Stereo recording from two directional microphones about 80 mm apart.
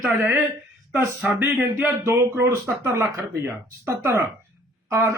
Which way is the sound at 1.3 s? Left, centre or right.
Right.